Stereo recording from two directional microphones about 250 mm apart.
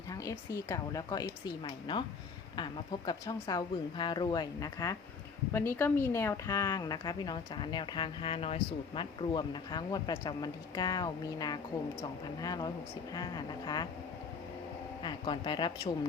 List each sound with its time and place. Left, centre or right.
0.1 s a woman's voice: centre
3.1 s a woman's voice: centre
15.0 s a woman's voice: centre